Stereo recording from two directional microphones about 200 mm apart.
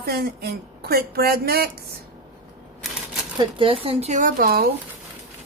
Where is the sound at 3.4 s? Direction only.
25° right (ahead or behind); by 4.7 s 50° right (ahead or behind).